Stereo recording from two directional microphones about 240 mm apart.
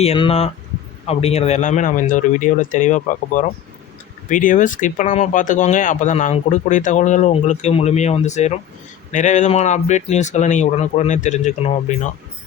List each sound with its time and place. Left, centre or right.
0.0 s speech: left